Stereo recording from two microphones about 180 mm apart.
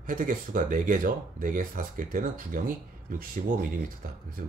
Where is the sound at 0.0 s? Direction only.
50° right (ahead or behind).